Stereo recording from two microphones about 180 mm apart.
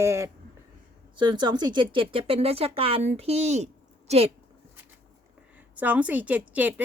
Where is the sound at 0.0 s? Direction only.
15° right (ahead or behind); by 3.7 s 40° right (ahead or behind).